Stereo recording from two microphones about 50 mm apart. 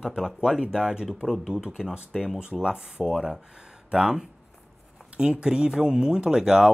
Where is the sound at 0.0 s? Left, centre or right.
Centre.